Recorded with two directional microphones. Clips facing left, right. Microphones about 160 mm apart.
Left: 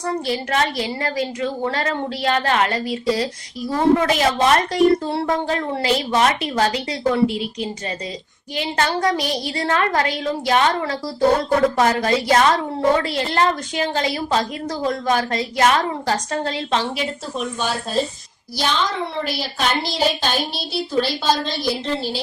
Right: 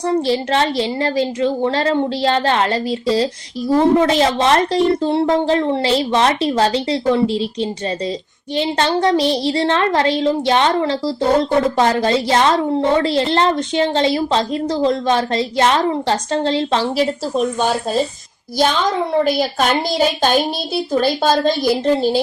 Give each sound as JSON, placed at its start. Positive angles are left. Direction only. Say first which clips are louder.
{"t": 0.0, "sound": "a woman's voice", "louder": "right 6 dB", "side_deg": -30}
{"t": 19.2, "sound": "a woman's voice", "louder": "right 7 dB", "side_deg": -45}